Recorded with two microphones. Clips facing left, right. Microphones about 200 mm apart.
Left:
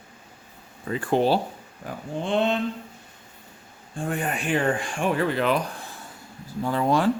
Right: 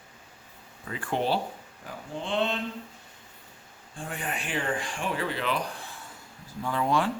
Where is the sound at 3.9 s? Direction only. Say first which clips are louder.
Left 7 dB; 50° left (ahead or behind).